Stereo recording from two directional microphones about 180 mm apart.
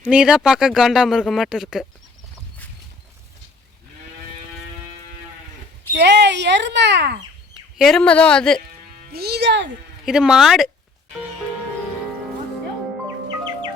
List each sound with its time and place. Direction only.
0.0 s speech: 5° right (ahead or behind)
6.0 s speech: 70° right (ahead or behind)
7.8 s speech: centre (ahead or behind)
9.1 s speech: 65° right (ahead or behind)
10.1 s speech: 5° right (ahead or behind)